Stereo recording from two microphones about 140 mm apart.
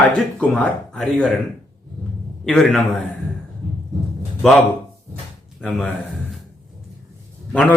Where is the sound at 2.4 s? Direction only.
Centre (ahead or behind).